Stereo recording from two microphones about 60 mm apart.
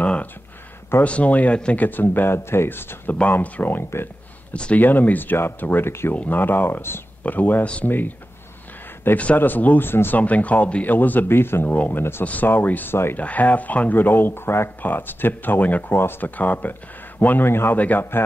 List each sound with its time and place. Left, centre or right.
0.0 s a sound: left
1.0 s speech: left
3.2 s speech: left
6.1 s speech: left
7.6 s speech: centre
9.1 s speech: left
11.7 s speech: left
12.0 s speech: left
13.2 s speech: left
14.8 s speech: left
15.9 s speech: left
16.3 s speech: left
17.7 s speech: left